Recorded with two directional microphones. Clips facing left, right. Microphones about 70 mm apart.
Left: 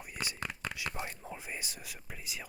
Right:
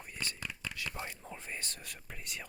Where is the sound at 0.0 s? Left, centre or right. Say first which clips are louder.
Left 2 dB; centre.